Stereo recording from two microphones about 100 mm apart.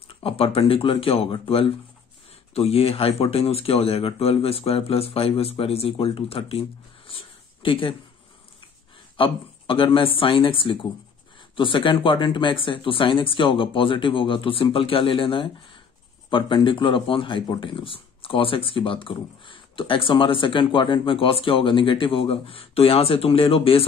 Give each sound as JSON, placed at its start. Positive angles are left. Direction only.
{"t": 0.1, "sound": "speech", "side_deg": 70}
{"t": 2.5, "sound": "speech", "side_deg": 85}
{"t": 7.1, "sound": "a sound", "side_deg": 65}
{"t": 9.1, "sound": "a man's voice", "side_deg": 65}